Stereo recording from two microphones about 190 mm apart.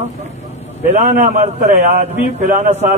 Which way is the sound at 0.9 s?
35° right (ahead or behind).